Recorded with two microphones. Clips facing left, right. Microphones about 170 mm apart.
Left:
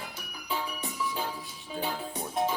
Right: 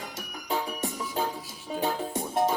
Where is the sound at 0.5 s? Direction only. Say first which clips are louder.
Right 4 dB; 45° right (ahead or behind).